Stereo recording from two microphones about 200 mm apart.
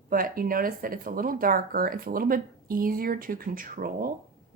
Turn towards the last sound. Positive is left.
turn(degrees=-45)  # may be behind; listen again after turning